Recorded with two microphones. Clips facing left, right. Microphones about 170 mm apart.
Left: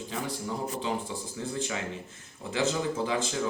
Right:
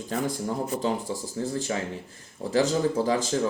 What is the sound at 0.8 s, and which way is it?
Speech, 40° right (ahead or behind).